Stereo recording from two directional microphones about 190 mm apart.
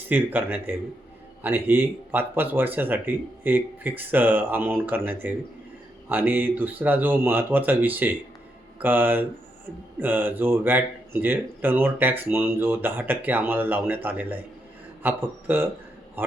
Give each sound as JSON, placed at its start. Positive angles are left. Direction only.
{"t": 0.1, "sound": "speech", "side_deg": -10}